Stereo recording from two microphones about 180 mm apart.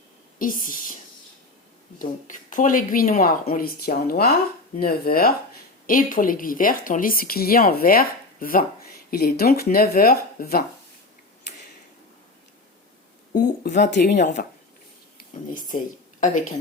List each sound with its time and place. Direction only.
0.3 s speech: 50° left (ahead or behind)
2.0 s speech: 45° left (ahead or behind)
13.3 s speech: 65° left (ahead or behind); by 16.5 s 45° left (ahead or behind)